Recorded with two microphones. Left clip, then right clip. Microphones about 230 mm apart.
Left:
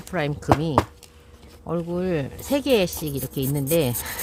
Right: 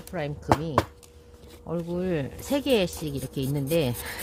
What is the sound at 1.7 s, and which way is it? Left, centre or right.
Speech, centre.